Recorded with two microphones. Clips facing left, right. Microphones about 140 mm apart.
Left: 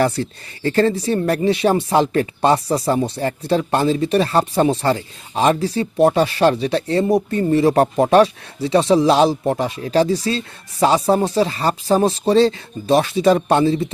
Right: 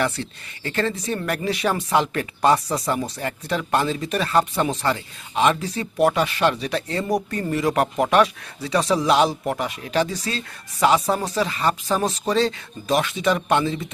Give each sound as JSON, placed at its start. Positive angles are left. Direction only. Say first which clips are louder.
{"t": 0.0, "sound": "speech", "louder": "left 6 dB", "side_deg": 35}